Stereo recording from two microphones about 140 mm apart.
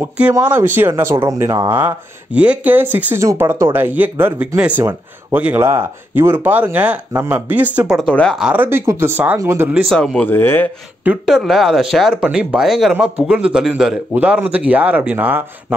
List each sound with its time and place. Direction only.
0.0 s speech: 15° right (ahead or behind)
8.1 s speech: 10° left (ahead or behind)
8.4 s speech: 10° right (ahead or behind)
9.8 s speech: 5° left (ahead or behind)
11.1 s speech: 5° right (ahead or behind)